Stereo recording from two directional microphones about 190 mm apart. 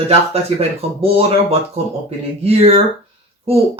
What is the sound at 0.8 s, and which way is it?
Speech, 30° right (ahead or behind).